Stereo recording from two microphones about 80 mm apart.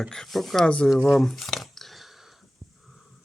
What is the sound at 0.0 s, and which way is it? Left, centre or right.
Speech, centre.